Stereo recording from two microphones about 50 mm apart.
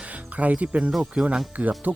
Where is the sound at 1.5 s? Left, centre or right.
Right.